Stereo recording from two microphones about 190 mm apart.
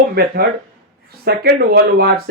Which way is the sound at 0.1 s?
55° right (ahead or behind).